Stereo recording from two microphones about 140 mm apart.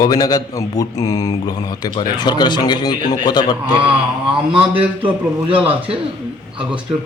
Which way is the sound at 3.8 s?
40° right (ahead or behind).